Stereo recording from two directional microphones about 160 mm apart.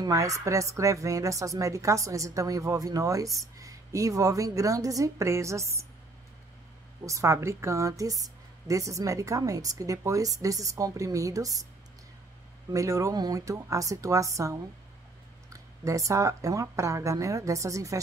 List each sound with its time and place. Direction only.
0.0 s a woman's voice: 20° right (ahead or behind)
7.1 s a woman's voice: 20° right (ahead or behind)
12.7 s a woman's voice: 20° right (ahead or behind)